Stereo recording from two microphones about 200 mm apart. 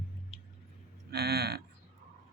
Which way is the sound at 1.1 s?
55° right (ahead or behind).